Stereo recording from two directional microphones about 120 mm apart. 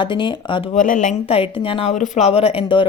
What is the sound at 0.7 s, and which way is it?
Speech, 90° left.